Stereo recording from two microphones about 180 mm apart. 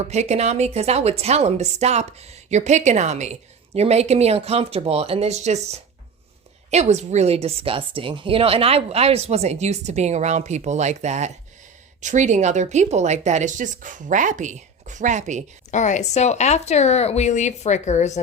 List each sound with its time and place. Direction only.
0.0 s a woman's voice: 40° right (ahead or behind)
6.7 s a woman's voice: 40° right (ahead or behind)
15.7 s speech: 40° left (ahead or behind)